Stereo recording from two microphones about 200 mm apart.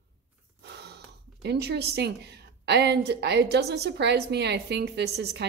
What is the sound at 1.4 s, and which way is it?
A woman's voice, 55° right (ahead or behind).